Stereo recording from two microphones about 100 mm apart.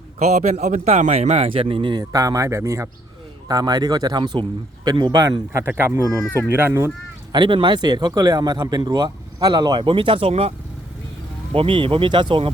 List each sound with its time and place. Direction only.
0.2 s a man's voice: 90° right; by 2.0 s 60° right (ahead or behind)
2.0 s speech: 35° right (ahead or behind)
3.5 s speech: 40° right (ahead or behind)
5.6 s speech: 25° right (ahead or behind)
6.3 s speech: 20° right (ahead or behind)
7.3 s speech: 55° right (ahead or behind); by 10.5 s 85° right
11.5 s speech: 65° right (ahead or behind)